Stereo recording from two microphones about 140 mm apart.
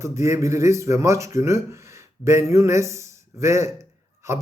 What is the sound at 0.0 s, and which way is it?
A man's voice, 20° right (ahead or behind).